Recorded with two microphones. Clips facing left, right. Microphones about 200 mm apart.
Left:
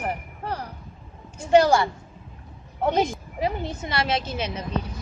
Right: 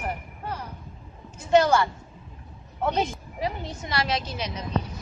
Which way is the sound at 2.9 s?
15° left (ahead or behind).